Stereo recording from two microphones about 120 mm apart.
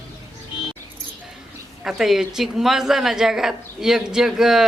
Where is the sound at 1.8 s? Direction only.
5° right (ahead or behind).